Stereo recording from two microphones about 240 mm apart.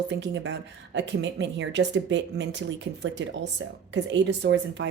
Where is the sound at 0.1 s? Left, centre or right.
Right.